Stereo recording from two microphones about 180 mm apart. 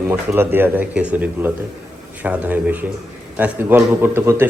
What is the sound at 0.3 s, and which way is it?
A man's voice, 10° right (ahead or behind).